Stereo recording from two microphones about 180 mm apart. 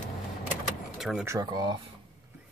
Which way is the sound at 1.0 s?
Centre (ahead or behind).